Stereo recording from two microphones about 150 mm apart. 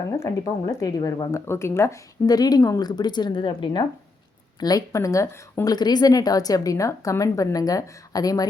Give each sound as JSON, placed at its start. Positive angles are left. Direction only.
{"t": 0.2, "sound": "a woman's voice", "side_deg": 25}